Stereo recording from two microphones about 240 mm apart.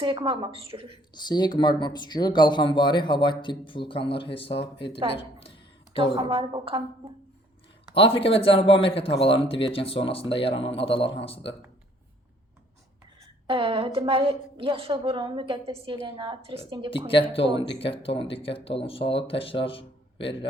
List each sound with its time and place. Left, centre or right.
0.0 s a woman's voice: centre
1.1 s speech: centre
5.1 s a sound: left
6.0 s a woman's voice: right
7.9 s speech: left
13.5 s a woman's voice: right
17.7 s speech: left